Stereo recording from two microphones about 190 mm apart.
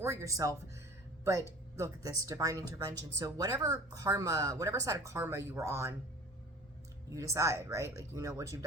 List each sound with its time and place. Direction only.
0.0 s speech: 15° right (ahead or behind)
7.2 s speech: 15° right (ahead or behind)